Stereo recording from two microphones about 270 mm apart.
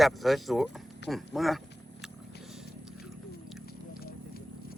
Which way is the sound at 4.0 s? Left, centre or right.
Left.